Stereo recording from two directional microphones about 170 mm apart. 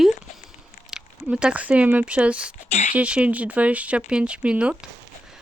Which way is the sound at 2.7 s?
40° left (ahead or behind).